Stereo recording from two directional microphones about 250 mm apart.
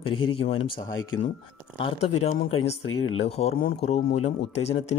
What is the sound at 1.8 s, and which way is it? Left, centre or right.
Speech, left.